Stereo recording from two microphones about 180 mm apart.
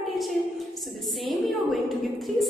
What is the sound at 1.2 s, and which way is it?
A woman's voice, centre (ahead or behind).